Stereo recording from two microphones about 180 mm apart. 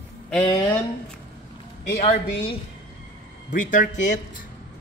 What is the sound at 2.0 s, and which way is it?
Speech, 35° left (ahead or behind).